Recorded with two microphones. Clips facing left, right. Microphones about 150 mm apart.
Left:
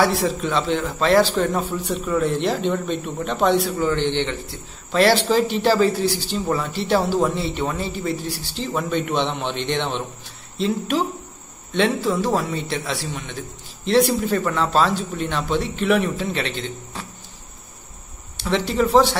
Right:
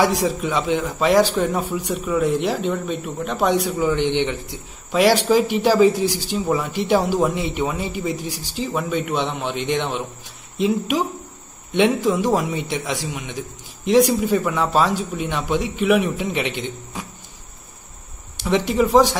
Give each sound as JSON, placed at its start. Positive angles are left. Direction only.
{"t": 0.0, "sound": "a man's voice", "side_deg": -15}
{"t": 18.4, "sound": "a man's voice", "side_deg": -15}